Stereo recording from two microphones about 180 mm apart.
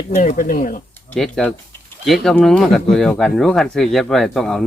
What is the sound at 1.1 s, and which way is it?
Speech, centre (ahead or behind).